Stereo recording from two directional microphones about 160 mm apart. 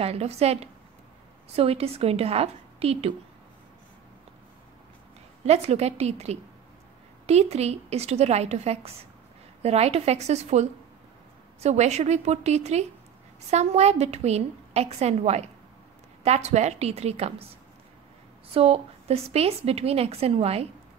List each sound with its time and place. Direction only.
0.0 s a woman's voice: 40° right (ahead or behind)
5.4 s a woman's voice: 45° right (ahead or behind)
18.5 s a woman's voice: 35° right (ahead or behind)